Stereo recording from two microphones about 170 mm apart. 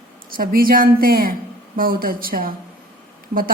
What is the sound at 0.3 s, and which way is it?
Mantra, 60° right (ahead or behind).